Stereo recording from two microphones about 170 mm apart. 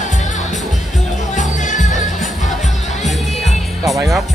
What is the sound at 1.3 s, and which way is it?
Music, 45° left (ahead or behind).